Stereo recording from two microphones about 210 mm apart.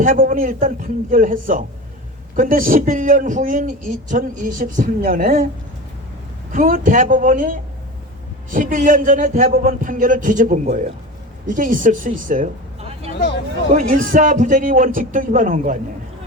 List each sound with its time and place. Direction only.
0.0 s speech: 40° right (ahead or behind)
6.5 s speech: 40° right (ahead or behind)
13.7 s speech: 40° right (ahead or behind)